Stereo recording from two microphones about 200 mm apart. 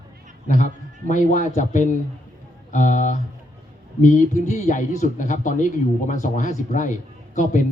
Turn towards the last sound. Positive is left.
turn(degrees=40)  # may be behind; listen again after turning